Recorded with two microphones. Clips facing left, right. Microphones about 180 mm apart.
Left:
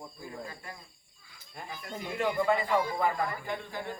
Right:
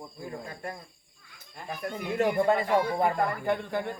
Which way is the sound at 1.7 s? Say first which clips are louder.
Right 6 dB; 65° right (ahead or behind).